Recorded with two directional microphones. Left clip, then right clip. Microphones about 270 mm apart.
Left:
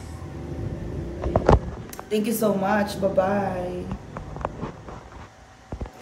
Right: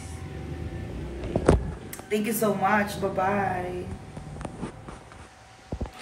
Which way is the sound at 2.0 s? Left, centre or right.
Centre.